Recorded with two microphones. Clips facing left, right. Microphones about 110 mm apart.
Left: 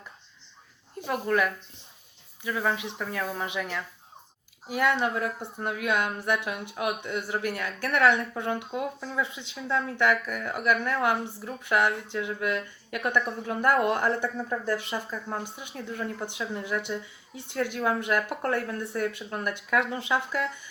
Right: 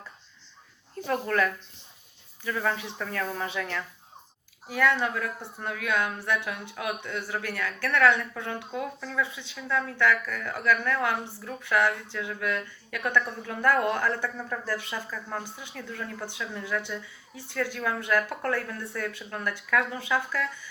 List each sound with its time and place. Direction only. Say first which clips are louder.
0.9 s speech: even; 10° left (ahead or behind)
4.7 s speech: even; 25° left (ahead or behind)